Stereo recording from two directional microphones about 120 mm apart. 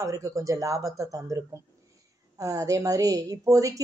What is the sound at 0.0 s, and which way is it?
A woman's voice, 25° right (ahead or behind).